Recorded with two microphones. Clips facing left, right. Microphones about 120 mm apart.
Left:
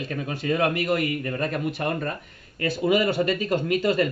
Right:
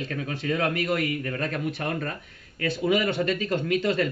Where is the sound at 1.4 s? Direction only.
5° left (ahead or behind).